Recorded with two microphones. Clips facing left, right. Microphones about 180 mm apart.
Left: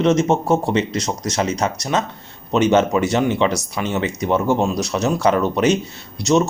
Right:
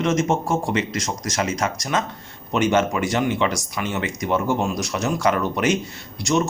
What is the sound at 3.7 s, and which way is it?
Speech, 25° left (ahead or behind).